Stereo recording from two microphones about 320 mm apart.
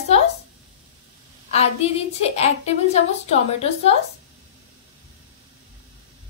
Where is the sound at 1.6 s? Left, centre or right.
Centre.